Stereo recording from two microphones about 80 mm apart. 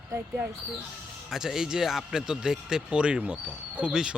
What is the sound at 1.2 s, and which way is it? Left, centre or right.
Speech, centre.